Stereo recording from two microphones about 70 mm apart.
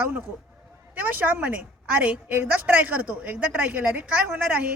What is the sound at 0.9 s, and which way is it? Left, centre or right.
A woman's voice, right.